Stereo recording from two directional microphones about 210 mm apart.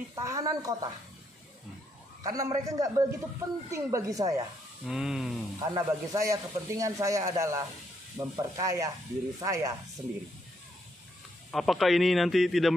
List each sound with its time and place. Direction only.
0.1 s a man's voice: 15° right (ahead or behind)
2.2 s a man's voice: 15° right (ahead or behind)
4.8 s speech: centre (ahead or behind)
5.6 s a man's voice: 15° right (ahead or behind)
11.5 s speech: centre (ahead or behind)